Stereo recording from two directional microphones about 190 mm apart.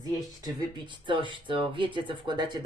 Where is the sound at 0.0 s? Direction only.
25° right (ahead or behind).